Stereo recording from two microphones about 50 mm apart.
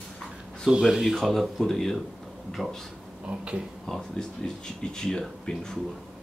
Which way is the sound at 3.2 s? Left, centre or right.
Right.